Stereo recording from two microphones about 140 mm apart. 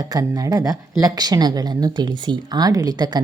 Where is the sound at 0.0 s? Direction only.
25° right (ahead or behind).